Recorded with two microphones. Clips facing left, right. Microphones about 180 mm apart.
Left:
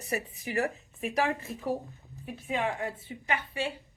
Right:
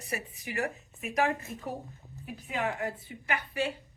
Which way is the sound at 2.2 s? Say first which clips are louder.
Left 2 dB; 25° left (ahead or behind).